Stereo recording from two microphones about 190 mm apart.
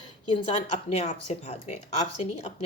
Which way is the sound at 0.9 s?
35° left (ahead or behind).